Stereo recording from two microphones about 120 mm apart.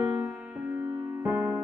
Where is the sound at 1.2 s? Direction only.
20° right (ahead or behind).